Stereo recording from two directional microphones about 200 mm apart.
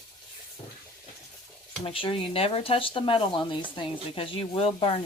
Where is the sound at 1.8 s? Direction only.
25° left (ahead or behind).